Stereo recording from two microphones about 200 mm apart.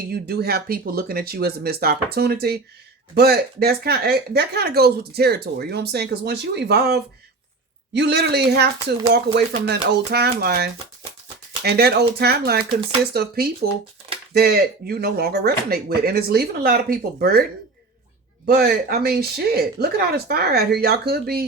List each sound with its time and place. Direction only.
0.1 s speech: 50° right (ahead or behind)
18.4 s speech: 50° right (ahead or behind)